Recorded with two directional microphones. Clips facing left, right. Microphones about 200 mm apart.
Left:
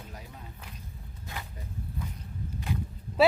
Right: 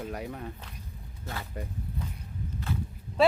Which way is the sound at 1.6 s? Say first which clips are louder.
Right 8 dB; 65° right (ahead or behind).